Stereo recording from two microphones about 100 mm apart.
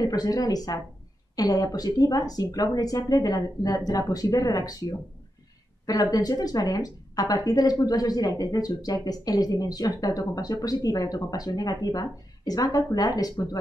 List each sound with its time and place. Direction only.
0.0 s a woman's voice: 40° left (ahead or behind)